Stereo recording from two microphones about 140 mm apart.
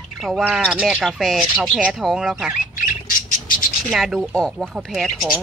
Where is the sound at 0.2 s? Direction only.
5° right (ahead or behind).